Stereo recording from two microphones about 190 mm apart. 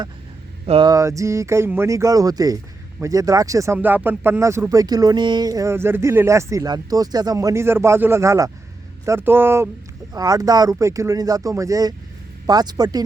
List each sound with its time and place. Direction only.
0.6 s speech: 25° right (ahead or behind)